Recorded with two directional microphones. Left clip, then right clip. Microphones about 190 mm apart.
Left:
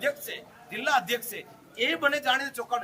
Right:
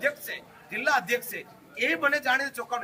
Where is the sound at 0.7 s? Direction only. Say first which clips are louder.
Even; 20° left (ahead or behind).